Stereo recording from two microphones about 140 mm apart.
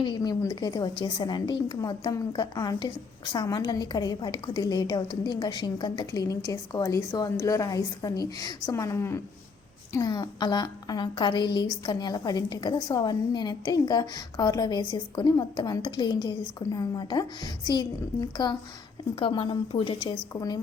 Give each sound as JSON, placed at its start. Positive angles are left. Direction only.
{"t": 0.0, "sound": "a woman's voice", "side_deg": 30}